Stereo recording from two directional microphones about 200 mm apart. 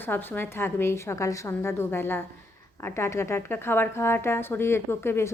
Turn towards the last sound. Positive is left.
turn(degrees=10)  # may be behind; listen again after turning